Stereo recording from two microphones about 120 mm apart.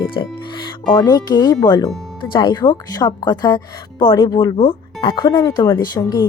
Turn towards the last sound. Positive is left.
turn(degrees=35)  # may be behind; listen again after turning